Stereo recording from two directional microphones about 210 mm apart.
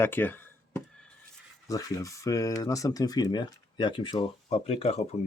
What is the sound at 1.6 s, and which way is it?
Speech, 15° left (ahead or behind).